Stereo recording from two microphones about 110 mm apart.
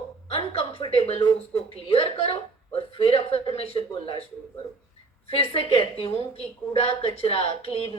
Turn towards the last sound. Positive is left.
turn(degrees=65)  # may be behind; listen again after turning